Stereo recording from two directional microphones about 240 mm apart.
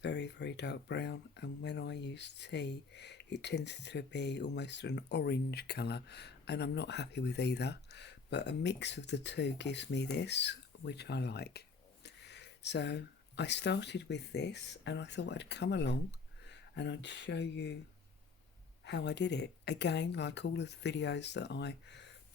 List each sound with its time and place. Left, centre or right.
0.0 s speech: left
18.9 s speech: left